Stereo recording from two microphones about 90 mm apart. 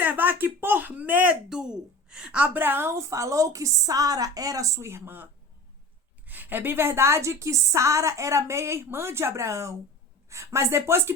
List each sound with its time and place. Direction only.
0.0 s a woman's voice: 20° right (ahead or behind)